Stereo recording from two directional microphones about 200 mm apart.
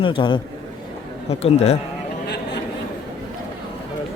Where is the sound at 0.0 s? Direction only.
25° left (ahead or behind).